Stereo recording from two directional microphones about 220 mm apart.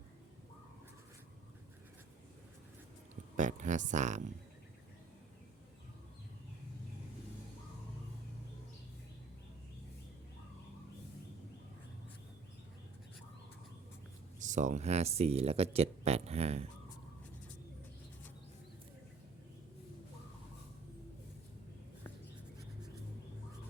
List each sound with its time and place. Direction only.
3.3 s speech: 35° right (ahead or behind)
14.3 s speech: 35° right (ahead or behind)